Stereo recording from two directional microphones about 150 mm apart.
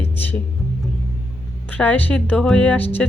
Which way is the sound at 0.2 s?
10° left (ahead or behind).